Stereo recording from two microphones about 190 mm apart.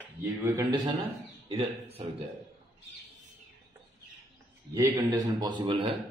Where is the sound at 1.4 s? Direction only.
30° right (ahead or behind).